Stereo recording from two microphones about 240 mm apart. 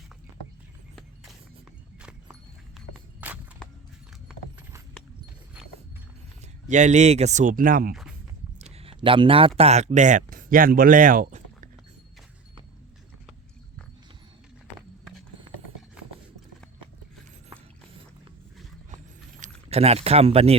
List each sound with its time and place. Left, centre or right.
2.0 s walk: centre
6.7 s speech: right
8.5 s a sound: right
9.6 s speech: right
19.4 s speech: right